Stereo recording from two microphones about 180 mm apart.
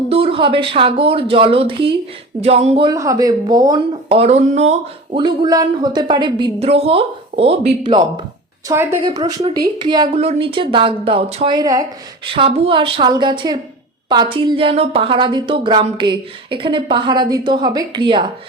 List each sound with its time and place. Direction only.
0.1 s speech: 30° right (ahead or behind)
2.9 s speech: 20° right (ahead or behind)
4.1 s speech: 35° right (ahead or behind)
8.6 s a woman's voice: 15° right (ahead or behind)